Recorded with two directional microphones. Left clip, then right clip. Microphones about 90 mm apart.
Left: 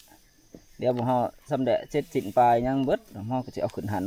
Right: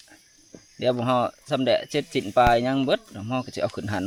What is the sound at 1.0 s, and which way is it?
Speech, 10° right (ahead or behind).